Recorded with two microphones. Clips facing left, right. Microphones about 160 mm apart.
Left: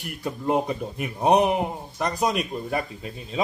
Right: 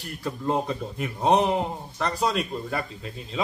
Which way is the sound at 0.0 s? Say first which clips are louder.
Left 1 dB; 15° left (ahead or behind).